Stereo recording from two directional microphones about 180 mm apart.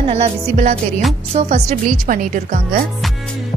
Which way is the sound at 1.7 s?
45° right (ahead or behind).